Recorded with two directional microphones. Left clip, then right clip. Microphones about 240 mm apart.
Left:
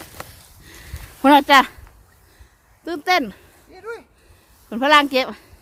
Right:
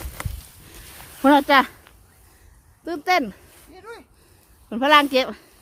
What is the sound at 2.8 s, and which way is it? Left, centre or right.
Speech, centre.